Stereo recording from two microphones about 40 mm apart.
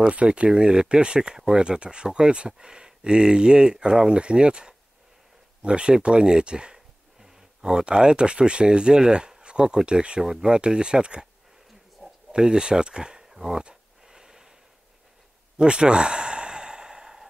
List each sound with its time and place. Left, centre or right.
0.1 s speech: right
12.3 s speech: right
14.0 s a sound: centre
15.5 s sigh: right